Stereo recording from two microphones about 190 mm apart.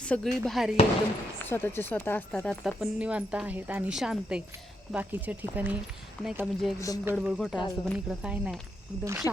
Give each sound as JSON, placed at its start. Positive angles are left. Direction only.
{"t": 0.0, "sound": "speech", "side_deg": 5}
{"t": 1.5, "sound": "speech", "side_deg": 10}
{"t": 6.7, "sound": "speech", "side_deg": 15}
{"t": 7.0, "sound": "speech", "side_deg": -10}